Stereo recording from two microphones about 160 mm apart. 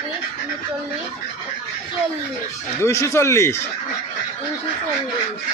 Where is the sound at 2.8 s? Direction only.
20° left (ahead or behind).